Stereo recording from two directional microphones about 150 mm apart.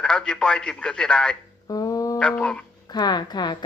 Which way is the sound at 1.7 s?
25° left (ahead or behind).